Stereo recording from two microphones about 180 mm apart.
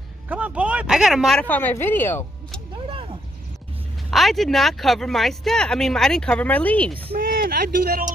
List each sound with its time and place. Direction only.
0.3 s speech: 10° right (ahead or behind); by 2.6 s 10° left (ahead or behind)
2.9 s a sound: 30° right (ahead or behind)
4.1 s speech: centre (ahead or behind)
7.2 s speech: 55° right (ahead or behind)